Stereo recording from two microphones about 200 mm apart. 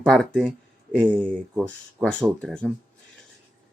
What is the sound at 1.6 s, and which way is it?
Speech, 5° left (ahead or behind).